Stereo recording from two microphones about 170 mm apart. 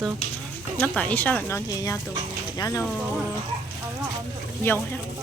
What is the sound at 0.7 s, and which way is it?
Speech, 10° left (ahead or behind).